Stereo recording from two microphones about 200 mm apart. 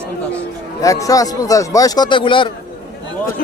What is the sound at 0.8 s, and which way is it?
Speech, 15° left (ahead or behind).